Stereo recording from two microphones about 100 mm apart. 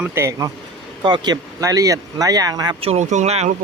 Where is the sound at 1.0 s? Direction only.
45° right (ahead or behind).